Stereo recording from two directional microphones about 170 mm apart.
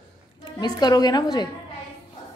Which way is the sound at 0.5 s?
25° left (ahead or behind).